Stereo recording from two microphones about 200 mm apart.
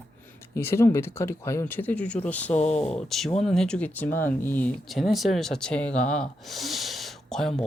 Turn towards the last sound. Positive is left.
turn(degrees=0)  # may be behind; listen again after turning